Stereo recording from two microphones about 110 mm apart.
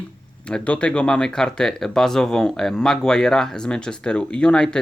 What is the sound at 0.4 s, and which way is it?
Speech, 10° left (ahead or behind).